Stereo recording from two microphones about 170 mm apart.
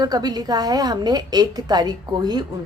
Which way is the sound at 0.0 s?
25° right (ahead or behind).